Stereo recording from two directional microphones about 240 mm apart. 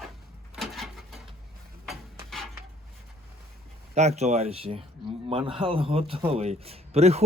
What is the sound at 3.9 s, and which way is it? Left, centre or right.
Speech, right.